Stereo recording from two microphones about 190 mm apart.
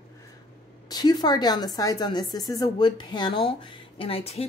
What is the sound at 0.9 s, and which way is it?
A woman's voice, 20° left (ahead or behind).